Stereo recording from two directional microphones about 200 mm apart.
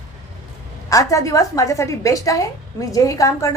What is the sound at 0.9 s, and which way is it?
A woman's voice, 15° left (ahead or behind).